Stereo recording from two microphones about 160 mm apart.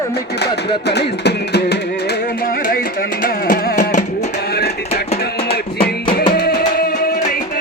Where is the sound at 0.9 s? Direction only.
90° left.